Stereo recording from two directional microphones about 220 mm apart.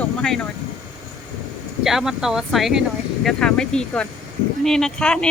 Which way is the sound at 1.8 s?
Centre (ahead or behind).